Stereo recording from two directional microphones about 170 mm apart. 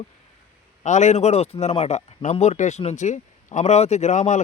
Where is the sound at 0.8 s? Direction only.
45° left (ahead or behind).